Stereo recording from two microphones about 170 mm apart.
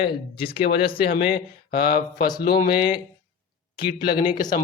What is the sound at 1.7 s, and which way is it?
A man's voice, 65° left (ahead or behind).